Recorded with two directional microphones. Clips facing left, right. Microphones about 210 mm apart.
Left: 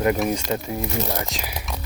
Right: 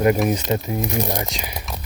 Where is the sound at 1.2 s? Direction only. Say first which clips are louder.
Right 1 dB; centre (ahead or behind).